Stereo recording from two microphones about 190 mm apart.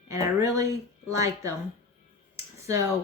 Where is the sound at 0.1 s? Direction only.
15° right (ahead or behind).